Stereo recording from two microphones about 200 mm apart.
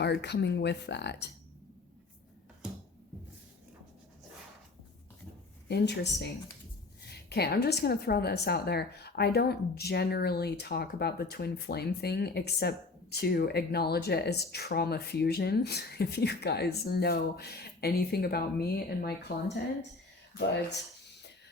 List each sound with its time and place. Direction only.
0.0 s speech: 55° left (ahead or behind)
5.6 s a woman's voice: 55° left (ahead or behind)